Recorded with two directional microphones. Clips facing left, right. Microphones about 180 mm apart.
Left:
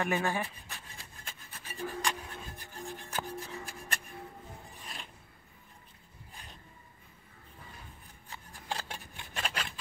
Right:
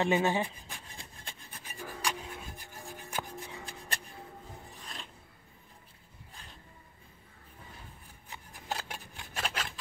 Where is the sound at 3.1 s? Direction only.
15° right (ahead or behind).